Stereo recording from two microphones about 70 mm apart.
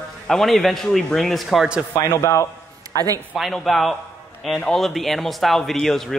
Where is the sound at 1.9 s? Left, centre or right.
Left.